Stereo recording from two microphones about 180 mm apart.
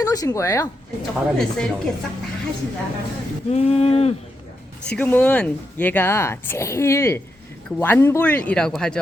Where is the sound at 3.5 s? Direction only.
35° left (ahead or behind).